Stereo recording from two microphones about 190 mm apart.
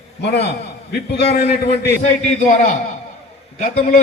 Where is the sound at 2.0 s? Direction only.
40° left (ahead or behind).